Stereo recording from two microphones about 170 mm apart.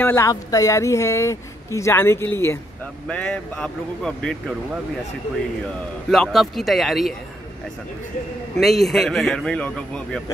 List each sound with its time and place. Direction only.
0.0 s a man's voice: 15° left (ahead or behind)
6.0 s a man's voice: centre (ahead or behind)
8.5 s a man's voice: centre (ahead or behind)